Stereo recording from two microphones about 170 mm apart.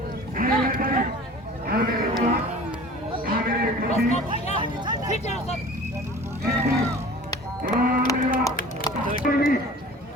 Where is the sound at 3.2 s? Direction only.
60° right (ahead or behind).